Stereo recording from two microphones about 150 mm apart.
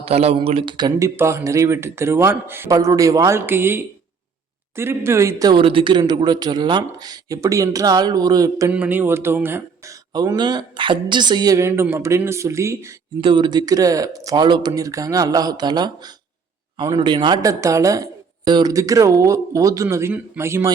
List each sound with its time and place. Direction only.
0.0 s speech: 45° right (ahead or behind); by 8.7 s 20° right (ahead or behind)
8.7 s speech: 10° right (ahead or behind)
10.1 s speech: 30° right (ahead or behind)
13.2 s speech: 30° right (ahead or behind)